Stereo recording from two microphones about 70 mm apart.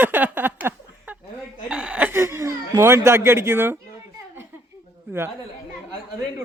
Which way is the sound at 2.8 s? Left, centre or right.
Right.